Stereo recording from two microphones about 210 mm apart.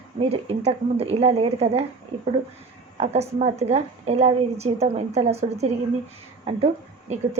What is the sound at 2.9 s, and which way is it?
A woman's voice, 30° right (ahead or behind).